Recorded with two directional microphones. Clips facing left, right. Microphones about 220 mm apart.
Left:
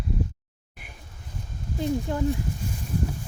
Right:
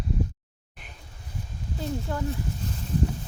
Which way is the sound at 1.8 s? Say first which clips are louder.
Left 5 dB; 15° left (ahead or behind).